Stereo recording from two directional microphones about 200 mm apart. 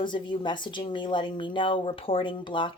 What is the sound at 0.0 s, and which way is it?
Speech, 25° left (ahead or behind).